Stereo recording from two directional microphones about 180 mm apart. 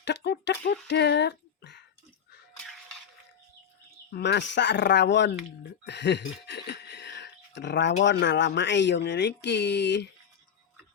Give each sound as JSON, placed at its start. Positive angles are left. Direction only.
{"t": 0.0, "sound": "speech", "side_deg": 70}
{"t": 4.1, "sound": "speech", "side_deg": 75}
{"t": 5.8, "sound": "a sound", "side_deg": 75}
{"t": 8.0, "sound": "speech", "side_deg": 85}